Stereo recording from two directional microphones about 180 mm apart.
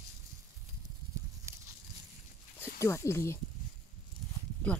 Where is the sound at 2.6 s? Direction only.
15° left (ahead or behind).